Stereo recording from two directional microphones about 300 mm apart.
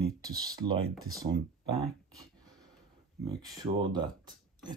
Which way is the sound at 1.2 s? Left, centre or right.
Centre.